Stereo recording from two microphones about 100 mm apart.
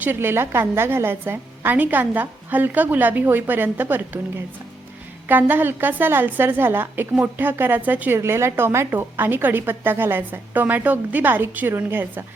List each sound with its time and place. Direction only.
0.0 s a woman's voice: 20° right (ahead or behind)